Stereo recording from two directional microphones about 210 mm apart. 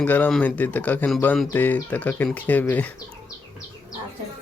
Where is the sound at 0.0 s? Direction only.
5° left (ahead or behind).